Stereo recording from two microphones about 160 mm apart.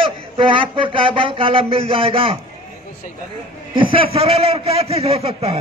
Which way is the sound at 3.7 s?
35° right (ahead or behind).